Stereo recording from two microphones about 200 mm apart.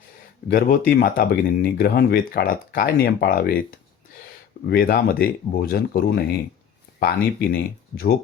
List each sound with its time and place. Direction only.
0.5 s speech: 45° left (ahead or behind)